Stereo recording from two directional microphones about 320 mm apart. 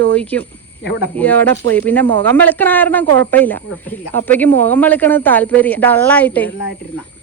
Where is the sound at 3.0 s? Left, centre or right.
Right.